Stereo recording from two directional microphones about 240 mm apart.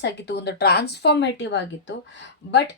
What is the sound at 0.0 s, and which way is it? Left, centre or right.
Speech, left.